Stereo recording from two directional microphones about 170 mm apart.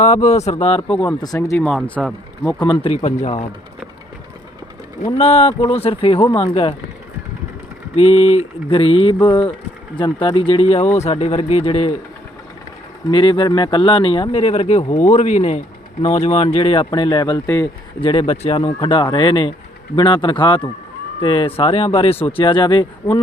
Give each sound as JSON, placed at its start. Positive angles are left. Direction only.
{"t": 0.0, "sound": "speech", "side_deg": 40}
{"t": 1.0, "sound": "speech", "side_deg": 20}
{"t": 2.6, "sound": "speech", "side_deg": 30}
{"t": 2.9, "sound": "speech", "side_deg": 45}
{"t": 5.1, "sound": "speech", "side_deg": 35}
{"t": 7.9, "sound": "speech", "side_deg": 35}
{"t": 13.1, "sound": "speech", "side_deg": 30}
{"t": 18.0, "sound": "speech", "side_deg": 35}